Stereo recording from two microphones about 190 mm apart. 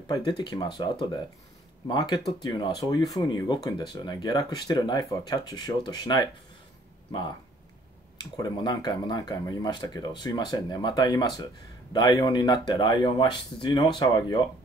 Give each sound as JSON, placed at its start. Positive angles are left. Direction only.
{"t": 0.1, "sound": "speech", "side_deg": 20}
{"t": 1.9, "sound": "speech", "side_deg": 25}
{"t": 8.2, "sound": "speech", "side_deg": 20}